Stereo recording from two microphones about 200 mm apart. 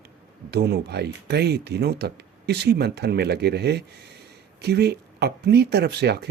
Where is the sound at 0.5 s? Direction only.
55° right (ahead or behind).